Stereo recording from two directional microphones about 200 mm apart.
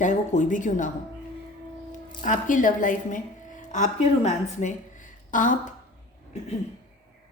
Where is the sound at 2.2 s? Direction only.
40° left (ahead or behind).